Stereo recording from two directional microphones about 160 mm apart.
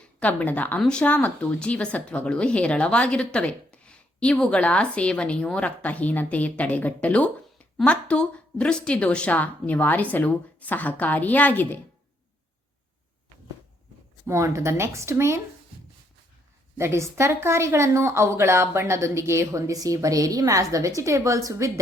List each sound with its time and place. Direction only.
0.0 s a woman's voice: 10° left (ahead or behind)
14.3 s speech: 20° right (ahead or behind)
16.7 s speech: 15° right (ahead or behind)